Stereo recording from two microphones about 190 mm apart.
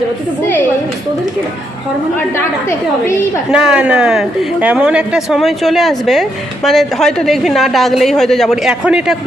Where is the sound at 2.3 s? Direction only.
15° left (ahead or behind).